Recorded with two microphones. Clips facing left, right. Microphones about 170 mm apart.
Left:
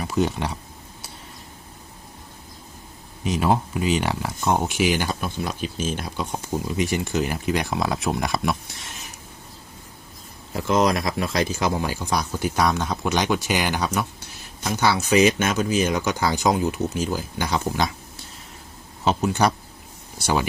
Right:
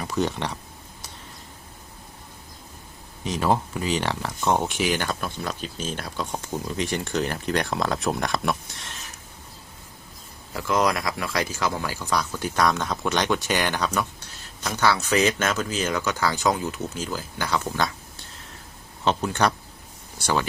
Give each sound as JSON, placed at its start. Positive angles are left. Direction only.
{"t": 0.0, "sound": "speech", "side_deg": 5}
{"t": 3.2, "sound": "speech", "side_deg": 10}
{"t": 10.5, "sound": "speech", "side_deg": 20}
{"t": 19.0, "sound": "speech", "side_deg": 10}